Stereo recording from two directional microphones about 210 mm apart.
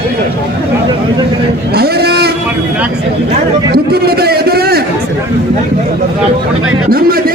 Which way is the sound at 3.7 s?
50° right (ahead or behind).